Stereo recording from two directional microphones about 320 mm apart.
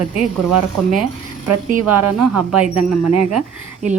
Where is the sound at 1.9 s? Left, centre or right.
Right.